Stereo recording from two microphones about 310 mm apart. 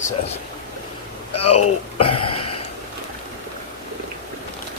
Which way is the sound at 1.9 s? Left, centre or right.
Centre.